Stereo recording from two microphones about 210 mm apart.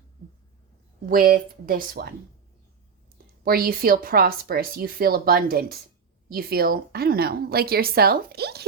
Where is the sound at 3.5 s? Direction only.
45° right (ahead or behind).